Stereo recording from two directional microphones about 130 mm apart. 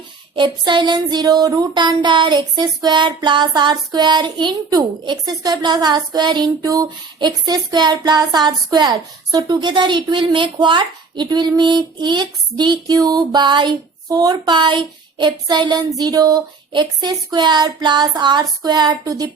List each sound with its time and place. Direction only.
0.3 s child singing: 35° right (ahead or behind)